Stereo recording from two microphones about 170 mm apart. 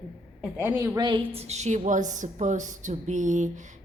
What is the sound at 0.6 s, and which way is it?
A woman's voice, 20° right (ahead or behind).